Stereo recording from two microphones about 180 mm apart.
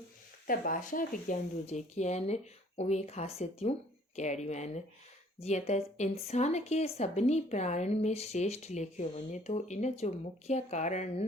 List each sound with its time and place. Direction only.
0.4 s speech: 50° left (ahead or behind)